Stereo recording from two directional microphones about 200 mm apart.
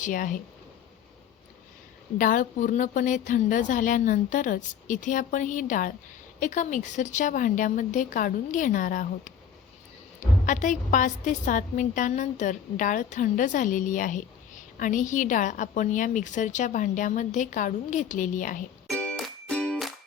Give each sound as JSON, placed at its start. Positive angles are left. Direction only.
{"t": 0.0, "sound": "a woman's voice", "side_deg": 40}
{"t": 2.1, "sound": "a woman's voice", "side_deg": 40}
{"t": 10.4, "sound": "a woman's voice", "side_deg": 40}
{"t": 18.9, "sound": "music", "side_deg": 5}